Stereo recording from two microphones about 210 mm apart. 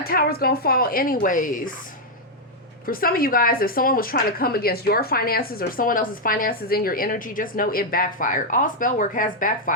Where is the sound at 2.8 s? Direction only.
45° left (ahead or behind).